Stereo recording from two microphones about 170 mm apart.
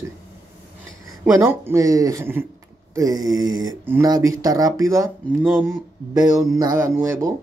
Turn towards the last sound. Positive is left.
turn(degrees=-15)  # may be behind; listen again after turning